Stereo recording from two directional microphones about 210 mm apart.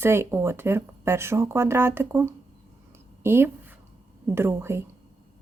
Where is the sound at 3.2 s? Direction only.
10° right (ahead or behind).